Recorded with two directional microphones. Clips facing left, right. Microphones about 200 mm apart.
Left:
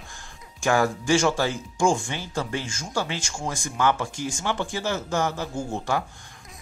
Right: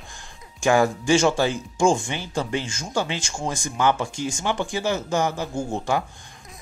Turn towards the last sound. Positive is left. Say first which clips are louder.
# right 2 dB
turn(degrees=-15)  # may be behind; listen again after turning